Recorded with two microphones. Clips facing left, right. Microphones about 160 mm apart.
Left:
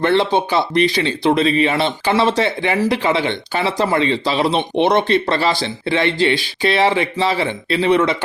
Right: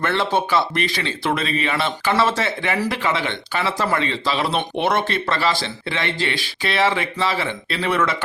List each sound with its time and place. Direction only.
0.0 s speech: 30° left (ahead or behind)